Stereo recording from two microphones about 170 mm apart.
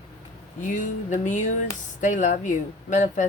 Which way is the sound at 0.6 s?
50° left (ahead or behind).